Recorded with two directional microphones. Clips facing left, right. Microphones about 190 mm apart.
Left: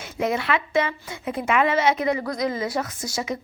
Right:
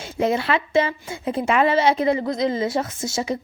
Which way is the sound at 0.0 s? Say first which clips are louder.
Right 3 dB; 30° right (ahead or behind).